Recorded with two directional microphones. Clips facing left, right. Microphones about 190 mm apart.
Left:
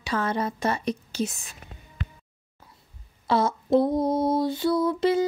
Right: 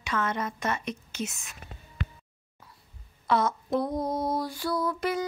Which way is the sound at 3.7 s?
25° left (ahead or behind).